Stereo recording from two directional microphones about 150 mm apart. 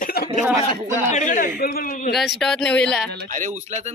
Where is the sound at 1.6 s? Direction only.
80° left.